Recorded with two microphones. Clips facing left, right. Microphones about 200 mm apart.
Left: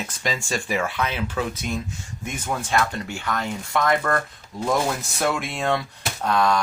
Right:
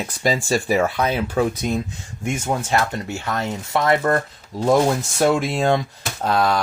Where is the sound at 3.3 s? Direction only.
25° right (ahead or behind).